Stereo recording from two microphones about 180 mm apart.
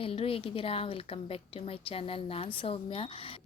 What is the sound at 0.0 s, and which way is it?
A woman's voice, 30° left (ahead or behind).